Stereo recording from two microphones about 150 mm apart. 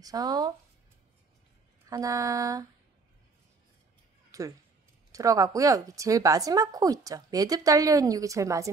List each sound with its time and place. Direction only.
0.0 s speech: 25° right (ahead or behind)
1.9 s speech: 20° right (ahead or behind)
4.3 s a sound: 25° right (ahead or behind)
5.1 s speech: 20° right (ahead or behind)